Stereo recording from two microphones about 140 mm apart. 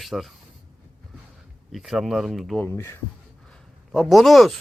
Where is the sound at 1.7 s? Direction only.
Centre (ahead or behind).